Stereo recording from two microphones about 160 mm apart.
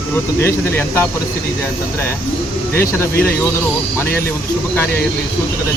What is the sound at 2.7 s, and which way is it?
Speech, 15° left (ahead or behind).